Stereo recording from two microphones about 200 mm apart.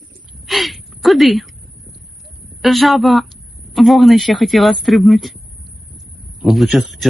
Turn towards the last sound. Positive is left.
turn(degrees=0)  # may be behind; listen again after turning